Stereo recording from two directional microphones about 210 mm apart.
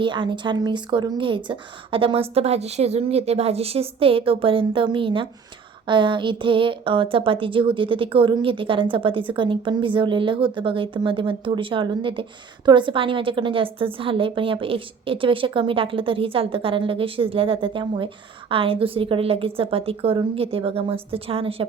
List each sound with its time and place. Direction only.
0.0 s a woman's voice: 20° right (ahead or behind)